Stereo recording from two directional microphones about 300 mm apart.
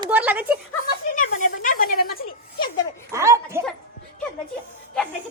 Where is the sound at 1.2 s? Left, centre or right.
Left.